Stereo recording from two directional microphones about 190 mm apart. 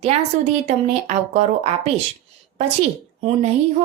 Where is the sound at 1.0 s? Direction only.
35° right (ahead or behind).